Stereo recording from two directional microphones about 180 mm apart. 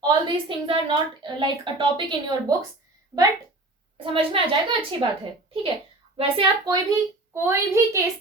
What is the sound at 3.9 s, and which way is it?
A woman's voice, 30° right (ahead or behind).